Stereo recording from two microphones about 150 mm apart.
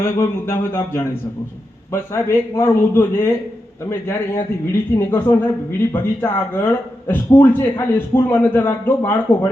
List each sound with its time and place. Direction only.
0.0 s a man's voice: 20° left (ahead or behind)